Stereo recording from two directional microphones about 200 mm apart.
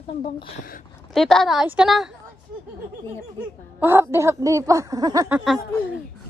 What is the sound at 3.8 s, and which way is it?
Speech, 10° right (ahead or behind).